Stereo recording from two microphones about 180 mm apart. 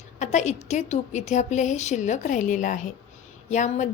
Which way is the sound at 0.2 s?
40° left (ahead or behind).